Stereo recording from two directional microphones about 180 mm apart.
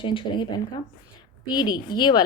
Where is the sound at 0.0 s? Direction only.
30° left (ahead or behind).